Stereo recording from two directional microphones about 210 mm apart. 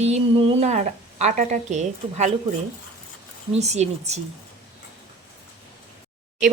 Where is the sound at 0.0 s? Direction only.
30° right (ahead or behind).